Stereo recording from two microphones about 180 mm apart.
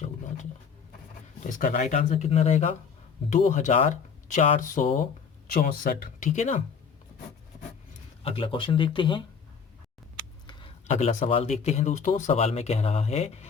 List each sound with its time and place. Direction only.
1.4 s speech: 50° left (ahead or behind)
8.2 s speech: 30° left (ahead or behind)
10.8 s a man's voice: 40° left (ahead or behind)